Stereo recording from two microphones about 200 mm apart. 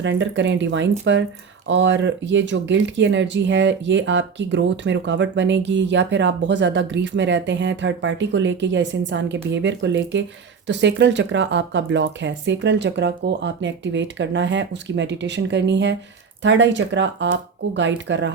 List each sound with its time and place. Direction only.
0.0 s speech: 65° right (ahead or behind)